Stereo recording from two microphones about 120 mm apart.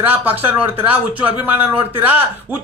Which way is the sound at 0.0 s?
15° right (ahead or behind).